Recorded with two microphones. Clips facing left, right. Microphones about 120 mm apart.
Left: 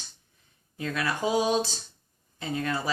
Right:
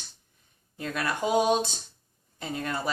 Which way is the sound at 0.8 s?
45° right (ahead or behind).